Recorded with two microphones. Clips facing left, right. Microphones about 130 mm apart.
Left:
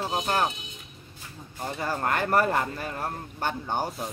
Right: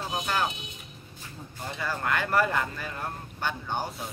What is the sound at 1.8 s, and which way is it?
Speech, 40° left (ahead or behind).